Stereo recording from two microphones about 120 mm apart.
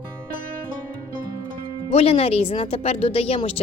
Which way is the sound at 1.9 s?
55° left (ahead or behind).